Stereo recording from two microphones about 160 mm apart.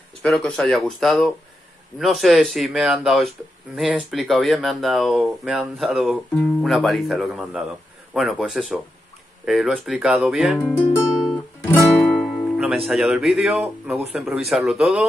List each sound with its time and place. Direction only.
0.2 s speech: 5° left (ahead or behind)
11.6 s speech: 5° left (ahead or behind)